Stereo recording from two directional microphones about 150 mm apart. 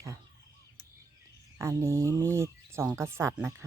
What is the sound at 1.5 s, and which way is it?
Speech, 20° right (ahead or behind).